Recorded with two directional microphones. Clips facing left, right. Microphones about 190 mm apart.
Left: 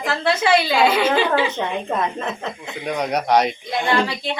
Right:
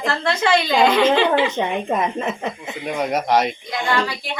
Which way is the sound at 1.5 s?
15° right (ahead or behind).